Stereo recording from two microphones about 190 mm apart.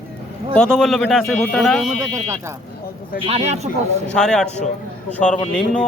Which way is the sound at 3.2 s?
35° right (ahead or behind).